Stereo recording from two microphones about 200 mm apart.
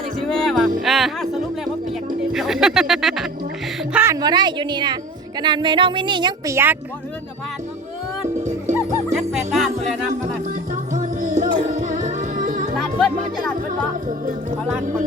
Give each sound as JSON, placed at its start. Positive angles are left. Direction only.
{"t": 0.3, "sound": "music", "side_deg": 0}
{"t": 2.3, "sound": "speech", "side_deg": 0}
{"t": 3.9, "sound": "a woman's voice", "side_deg": -15}
{"t": 8.7, "sound": "music", "side_deg": -15}
{"t": 9.1, "sound": "speech", "side_deg": 0}
{"t": 10.9, "sound": "music", "side_deg": -40}
{"t": 12.7, "sound": "speech", "side_deg": 5}